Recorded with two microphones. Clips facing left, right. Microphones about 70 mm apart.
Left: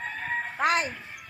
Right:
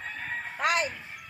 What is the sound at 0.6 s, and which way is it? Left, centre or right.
Speech, left.